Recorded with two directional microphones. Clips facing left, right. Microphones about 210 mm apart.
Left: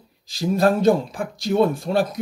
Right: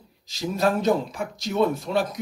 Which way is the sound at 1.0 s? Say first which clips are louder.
Left 6 dB; 30° left (ahead or behind).